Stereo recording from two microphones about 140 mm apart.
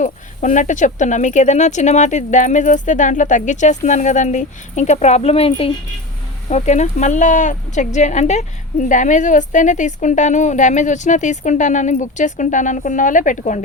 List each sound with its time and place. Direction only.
0.0 s speech: 65° left (ahead or behind); by 5.7 s 40° left (ahead or behind)
6.5 s speech: 55° left (ahead or behind)